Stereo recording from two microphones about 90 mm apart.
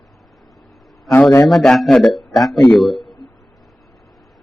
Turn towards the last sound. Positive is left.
turn(degrees=0)  # may be behind; listen again after turning